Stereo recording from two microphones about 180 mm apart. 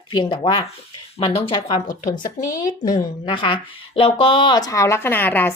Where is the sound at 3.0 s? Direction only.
25° left (ahead or behind).